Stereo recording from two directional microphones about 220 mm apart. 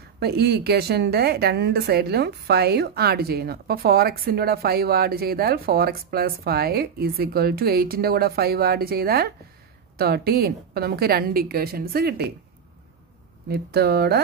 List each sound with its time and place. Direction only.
0.2 s speech: 45° right (ahead or behind)
13.5 s speech: 45° right (ahead or behind)